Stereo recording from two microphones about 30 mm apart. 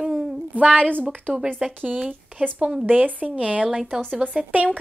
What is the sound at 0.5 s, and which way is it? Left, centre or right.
Speech, right.